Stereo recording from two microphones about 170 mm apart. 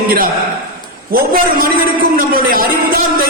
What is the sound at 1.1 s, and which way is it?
Speech, 60° right (ahead or behind).